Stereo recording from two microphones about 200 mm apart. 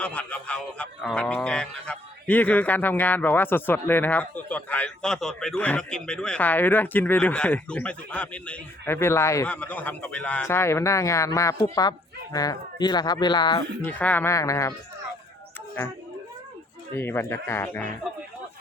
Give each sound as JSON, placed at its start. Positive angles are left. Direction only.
{"t": 0.0, "sound": "a man's voice", "side_deg": 5}
{"t": 13.8, "sound": "a man's voice", "side_deg": 10}
{"t": 17.0, "sound": "a man's voice", "side_deg": 10}